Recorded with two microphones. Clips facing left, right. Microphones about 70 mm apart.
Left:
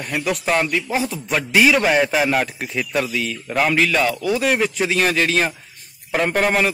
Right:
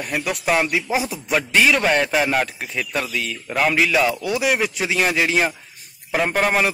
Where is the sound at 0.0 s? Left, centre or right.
Centre.